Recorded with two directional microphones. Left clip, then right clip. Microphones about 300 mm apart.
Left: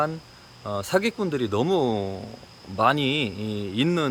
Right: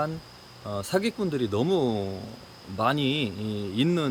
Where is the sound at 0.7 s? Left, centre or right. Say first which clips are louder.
Left 4 dB; centre.